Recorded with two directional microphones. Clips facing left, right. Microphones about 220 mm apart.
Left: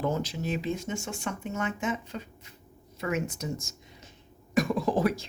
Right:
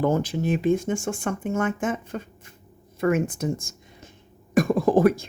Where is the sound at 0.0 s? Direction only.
55° right (ahead or behind).